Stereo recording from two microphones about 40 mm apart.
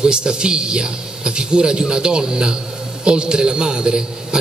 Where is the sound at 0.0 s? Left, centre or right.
Right.